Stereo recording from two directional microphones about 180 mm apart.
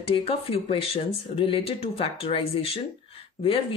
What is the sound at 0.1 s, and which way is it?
Speech, 35° left (ahead or behind).